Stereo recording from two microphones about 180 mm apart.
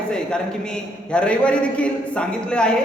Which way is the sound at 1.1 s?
5° left (ahead or behind).